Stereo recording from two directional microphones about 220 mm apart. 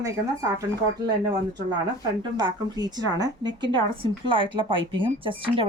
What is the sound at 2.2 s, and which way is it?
Speech, 20° right (ahead or behind).